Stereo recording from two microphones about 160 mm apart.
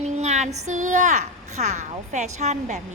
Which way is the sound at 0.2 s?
45° right (ahead or behind).